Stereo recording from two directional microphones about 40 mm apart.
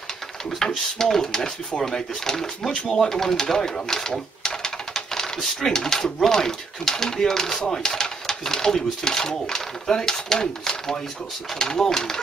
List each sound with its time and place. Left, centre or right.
0.9 s speech: centre
2.7 s speech: left
3.0 s speech: centre